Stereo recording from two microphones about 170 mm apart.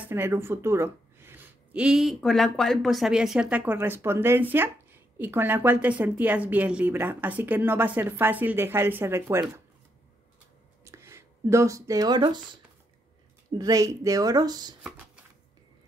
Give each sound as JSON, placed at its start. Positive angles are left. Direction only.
{"t": 0.0, "sound": "a woman's voice", "side_deg": -10}
{"t": 10.8, "sound": "a sound", "side_deg": -15}
{"t": 13.5, "sound": "speech", "side_deg": -20}